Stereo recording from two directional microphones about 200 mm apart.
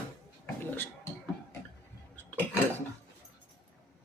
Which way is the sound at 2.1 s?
10° left (ahead or behind).